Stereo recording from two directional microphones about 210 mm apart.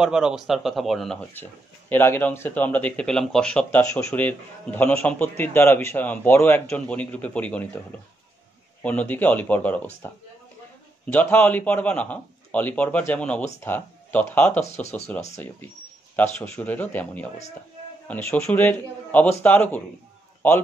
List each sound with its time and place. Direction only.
0.0 s speech: 5° right (ahead or behind)
8.8 s speech: 5° left (ahead or behind)
11.1 s speech: 10° left (ahead or behind)
14.6 s speech: 30° left (ahead or behind)
15.3 s speech: 10° left (ahead or behind)